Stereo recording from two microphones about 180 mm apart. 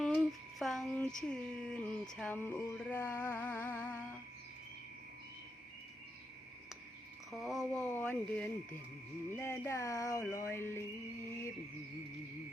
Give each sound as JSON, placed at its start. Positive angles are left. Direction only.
{"t": 0.0, "sound": "female singing", "side_deg": 5}
{"t": 7.3, "sound": "speech", "side_deg": 0}